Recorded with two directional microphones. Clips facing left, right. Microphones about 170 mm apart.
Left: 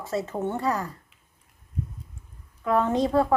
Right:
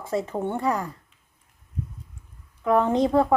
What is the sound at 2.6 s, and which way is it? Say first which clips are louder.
Speech: right 2 dB; 20° right (ahead or behind).